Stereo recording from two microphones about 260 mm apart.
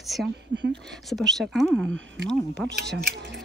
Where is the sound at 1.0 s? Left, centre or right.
Centre.